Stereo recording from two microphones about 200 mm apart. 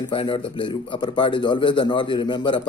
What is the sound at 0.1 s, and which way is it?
A man's voice, 25° left (ahead or behind).